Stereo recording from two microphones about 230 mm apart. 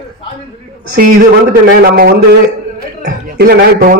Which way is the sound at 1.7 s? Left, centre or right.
Right.